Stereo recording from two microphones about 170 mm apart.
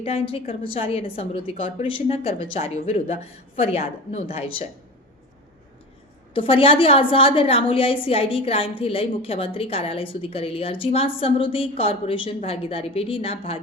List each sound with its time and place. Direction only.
0.0 s a woman's voice: 35° left (ahead or behind)
6.3 s a woman's voice: 30° left (ahead or behind)